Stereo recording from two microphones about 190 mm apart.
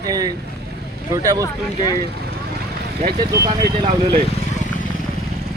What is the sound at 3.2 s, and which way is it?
Speech, 20° right (ahead or behind).